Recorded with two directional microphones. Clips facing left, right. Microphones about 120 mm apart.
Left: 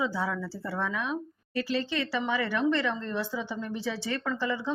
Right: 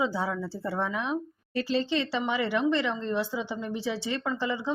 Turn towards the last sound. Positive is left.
turn(degrees=-15)  # may be behind; listen again after turning